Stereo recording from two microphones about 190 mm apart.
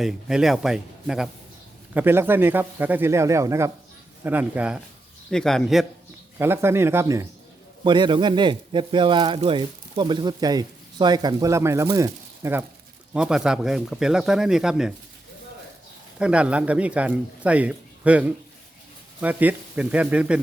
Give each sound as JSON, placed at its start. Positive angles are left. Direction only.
{"t": 0.0, "sound": "a man's voice", "side_deg": 0}
{"t": 6.4, "sound": "a man's voice", "side_deg": -10}
{"t": 16.1, "sound": "a man's voice", "side_deg": -5}